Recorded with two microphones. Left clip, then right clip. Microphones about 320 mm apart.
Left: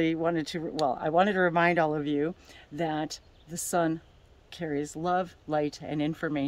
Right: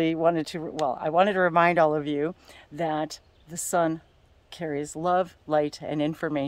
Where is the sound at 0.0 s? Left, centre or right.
Centre.